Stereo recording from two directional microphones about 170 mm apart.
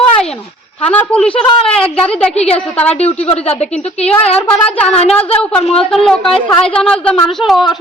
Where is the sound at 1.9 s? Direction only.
35° left (ahead or behind).